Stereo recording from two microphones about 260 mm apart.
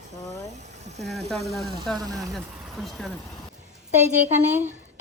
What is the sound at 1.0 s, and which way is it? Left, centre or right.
A woman's voice, centre.